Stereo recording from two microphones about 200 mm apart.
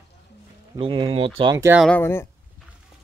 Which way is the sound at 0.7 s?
25° right (ahead or behind).